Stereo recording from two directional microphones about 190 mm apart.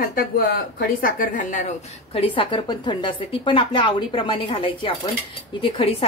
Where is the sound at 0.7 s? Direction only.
45° left (ahead or behind).